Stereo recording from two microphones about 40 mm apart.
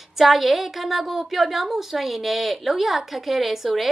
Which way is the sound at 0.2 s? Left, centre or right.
Centre.